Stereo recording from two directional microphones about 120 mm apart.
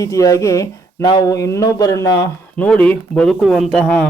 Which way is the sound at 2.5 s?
10° left (ahead or behind).